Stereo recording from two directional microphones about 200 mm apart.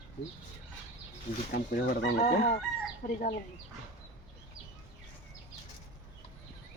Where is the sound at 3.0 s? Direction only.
40° left (ahead or behind).